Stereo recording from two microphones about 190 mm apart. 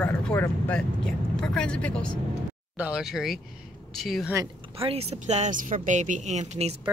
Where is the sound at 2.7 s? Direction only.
5° right (ahead or behind).